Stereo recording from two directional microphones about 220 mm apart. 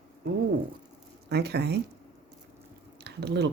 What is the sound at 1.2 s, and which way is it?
Speech, 50° right (ahead or behind).